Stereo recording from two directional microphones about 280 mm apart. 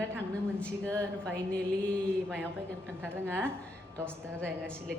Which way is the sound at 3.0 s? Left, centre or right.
Centre.